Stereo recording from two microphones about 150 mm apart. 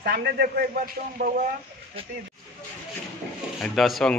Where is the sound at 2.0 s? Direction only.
40° right (ahead or behind).